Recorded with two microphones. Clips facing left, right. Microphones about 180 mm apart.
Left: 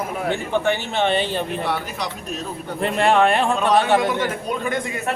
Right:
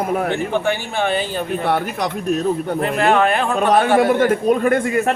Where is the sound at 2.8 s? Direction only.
5° right (ahead or behind).